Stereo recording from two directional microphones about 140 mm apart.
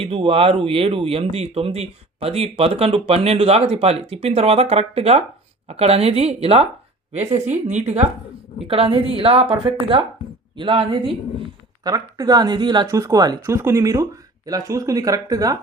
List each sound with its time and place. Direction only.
0.0 s a woman's voice: 40° right (ahead or behind); by 8.0 s 55° right (ahead or behind)
8.6 s speech: 40° right (ahead or behind)
11.8 s speech: 25° right (ahead or behind)
12.9 s speech: 20° right (ahead or behind)